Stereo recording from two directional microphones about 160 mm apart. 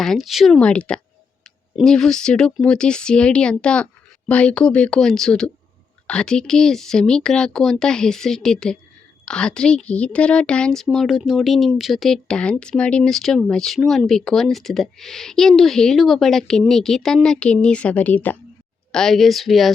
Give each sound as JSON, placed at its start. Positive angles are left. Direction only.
{"t": 0.0, "sound": "speech", "side_deg": 0}